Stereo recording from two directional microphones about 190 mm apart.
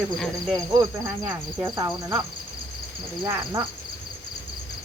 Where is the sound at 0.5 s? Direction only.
20° right (ahead or behind).